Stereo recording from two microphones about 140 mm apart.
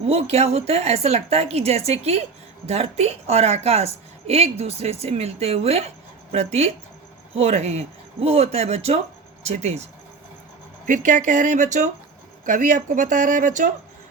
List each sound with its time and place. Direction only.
0.0 s a woman's voice: 45° right (ahead or behind)
10.8 s speech: 65° right (ahead or behind)